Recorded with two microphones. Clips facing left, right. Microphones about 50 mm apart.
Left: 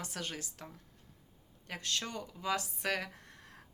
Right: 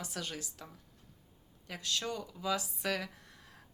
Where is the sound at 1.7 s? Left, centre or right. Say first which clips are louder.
Right 1 dB; left.